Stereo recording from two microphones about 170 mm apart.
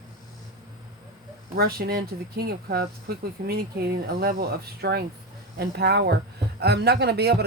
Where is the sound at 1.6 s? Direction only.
65° right (ahead or behind).